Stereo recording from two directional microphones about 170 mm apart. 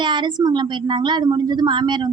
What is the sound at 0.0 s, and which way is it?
A woman's voice, 25° right (ahead or behind).